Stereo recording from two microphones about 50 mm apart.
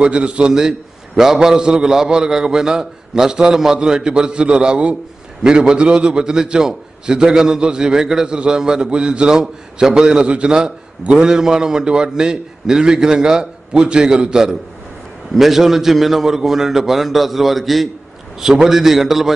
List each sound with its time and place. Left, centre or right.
0.0 s a man's voice: right; by 19.3 s centre